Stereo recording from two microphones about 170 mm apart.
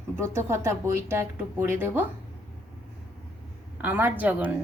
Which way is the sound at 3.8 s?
10° right (ahead or behind).